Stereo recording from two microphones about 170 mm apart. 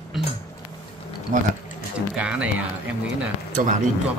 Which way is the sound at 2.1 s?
5° right (ahead or behind).